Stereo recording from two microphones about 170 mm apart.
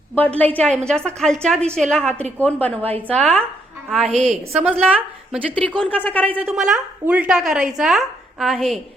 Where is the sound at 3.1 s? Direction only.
5° left (ahead or behind).